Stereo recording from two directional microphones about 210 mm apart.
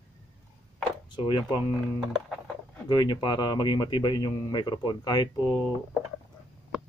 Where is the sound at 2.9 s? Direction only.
20° left (ahead or behind).